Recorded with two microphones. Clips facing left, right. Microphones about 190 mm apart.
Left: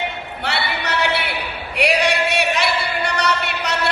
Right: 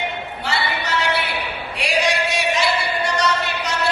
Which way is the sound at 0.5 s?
65° left (ahead or behind).